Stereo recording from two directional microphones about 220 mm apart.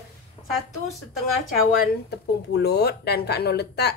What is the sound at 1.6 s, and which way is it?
A woman's voice, 45° left (ahead or behind).